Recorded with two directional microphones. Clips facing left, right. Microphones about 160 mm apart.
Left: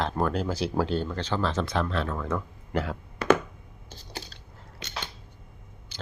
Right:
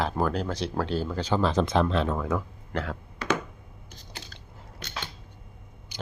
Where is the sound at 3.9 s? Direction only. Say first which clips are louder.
Left 5 dB; 30° left (ahead or behind).